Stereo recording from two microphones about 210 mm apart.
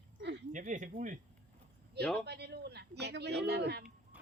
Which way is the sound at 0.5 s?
35° right (ahead or behind).